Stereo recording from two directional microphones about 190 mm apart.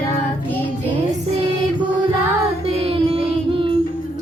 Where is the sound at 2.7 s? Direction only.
30° right (ahead or behind).